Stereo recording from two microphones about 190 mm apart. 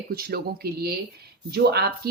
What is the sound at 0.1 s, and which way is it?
Speech, 55° right (ahead or behind).